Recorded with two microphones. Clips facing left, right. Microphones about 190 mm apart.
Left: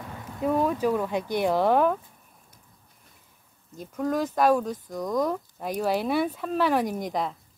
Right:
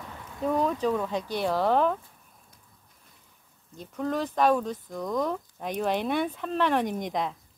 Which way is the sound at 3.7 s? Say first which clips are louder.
Left 2 dB; 5° left (ahead or behind).